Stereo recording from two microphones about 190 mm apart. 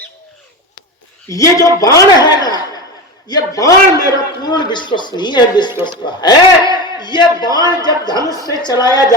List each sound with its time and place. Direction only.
1.3 s a man's voice: 15° left (ahead or behind)